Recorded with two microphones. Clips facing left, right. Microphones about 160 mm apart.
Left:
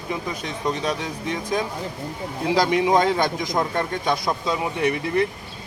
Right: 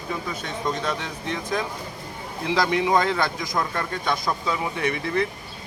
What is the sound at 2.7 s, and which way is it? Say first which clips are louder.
A man's voice: left 2 dB; 20° left (ahead or behind).